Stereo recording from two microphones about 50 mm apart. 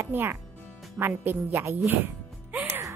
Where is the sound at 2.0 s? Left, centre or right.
Right.